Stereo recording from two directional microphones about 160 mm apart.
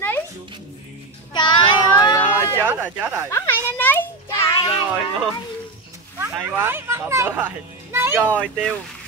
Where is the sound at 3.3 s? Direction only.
15° left (ahead or behind).